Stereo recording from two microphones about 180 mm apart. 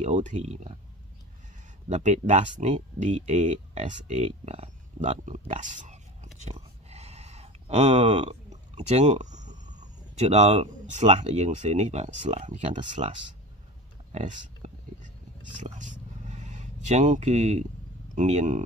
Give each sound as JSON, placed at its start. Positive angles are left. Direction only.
{"t": 0.0, "sound": "speech", "side_deg": -45}
{"t": 1.9, "sound": "speech", "side_deg": -40}
{"t": 6.4, "sound": "a sound", "side_deg": -35}
{"t": 11.1, "sound": "speech", "side_deg": -35}
{"t": 14.1, "sound": "speech", "side_deg": -40}
{"t": 15.6, "sound": "a sound", "side_deg": -40}
{"t": 18.1, "sound": "speech", "side_deg": -40}